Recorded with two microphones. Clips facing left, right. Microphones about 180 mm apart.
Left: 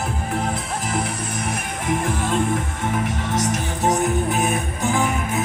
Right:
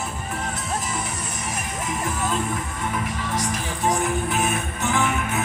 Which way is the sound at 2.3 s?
50° left (ahead or behind).